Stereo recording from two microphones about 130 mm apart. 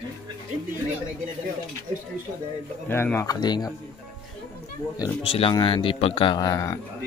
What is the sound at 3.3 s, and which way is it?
Speech, 30° left (ahead or behind).